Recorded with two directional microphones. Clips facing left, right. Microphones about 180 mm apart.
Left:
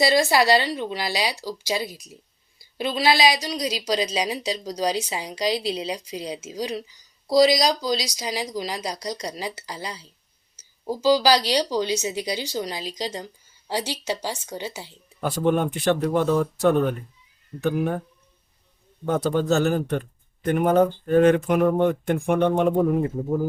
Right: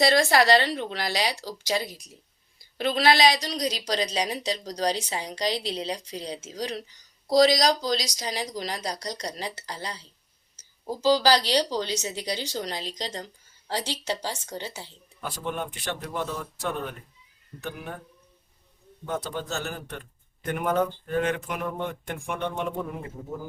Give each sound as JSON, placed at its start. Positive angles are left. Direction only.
{"t": 0.1, "sound": "a woman's voice", "side_deg": 10}
{"t": 3.0, "sound": "a woman's voice", "side_deg": 5}
{"t": 15.2, "sound": "speech", "side_deg": 55}
{"t": 16.1, "sound": "speech", "side_deg": 70}
{"t": 17.7, "sound": "speech", "side_deg": 55}
{"t": 19.0, "sound": "speech", "side_deg": 55}
{"t": 20.5, "sound": "speech", "side_deg": 35}
{"t": 21.8, "sound": "speech", "side_deg": 40}